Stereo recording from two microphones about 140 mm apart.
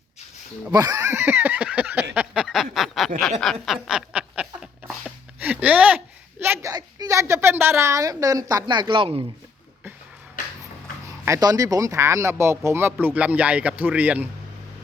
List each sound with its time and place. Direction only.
0.7 s a sound: 25° right (ahead or behind)
6.4 s a woman's voice: 20° right (ahead or behind); by 9.2 s 40° right (ahead or behind)
11.3 s speech: 25° right (ahead or behind); by 14.3 s 10° right (ahead or behind)